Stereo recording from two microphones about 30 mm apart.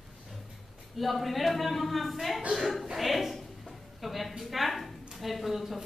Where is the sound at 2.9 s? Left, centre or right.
Centre.